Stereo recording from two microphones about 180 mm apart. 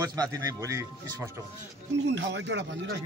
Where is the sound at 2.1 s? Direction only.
75° right (ahead or behind).